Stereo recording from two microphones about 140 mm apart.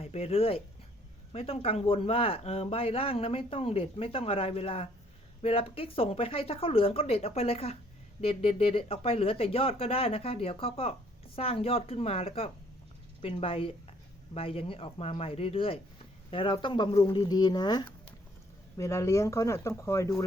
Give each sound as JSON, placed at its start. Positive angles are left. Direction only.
{"t": 0.0, "sound": "speech", "side_deg": 45}